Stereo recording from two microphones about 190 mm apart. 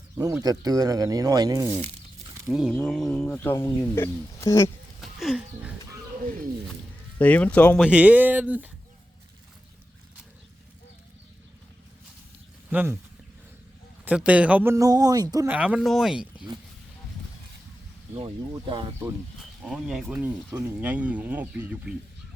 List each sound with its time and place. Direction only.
0.2 s speech: 15° right (ahead or behind)
1.7 s speech: 35° right (ahead or behind)
2.5 s speech: centre (ahead or behind); by 4.7 s 15° left (ahead or behind)
4.9 s speech: centre (ahead or behind)
6.2 s speech: 45° right (ahead or behind)
7.2 s speech: 5° left (ahead or behind)
7.8 s speech: 5° right (ahead or behind)
12.7 s speech: 10° right (ahead or behind)
14.0 s speech: 5° right (ahead or behind)
15.4 s speech: 5° right (ahead or behind)
18.1 s speech: 25° right (ahead or behind)
19.6 s speech: 5° right (ahead or behind)